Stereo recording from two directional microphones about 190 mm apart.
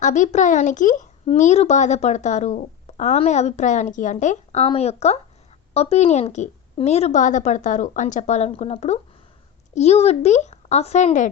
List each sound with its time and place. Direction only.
0.0 s a woman's voice: 40° left (ahead or behind)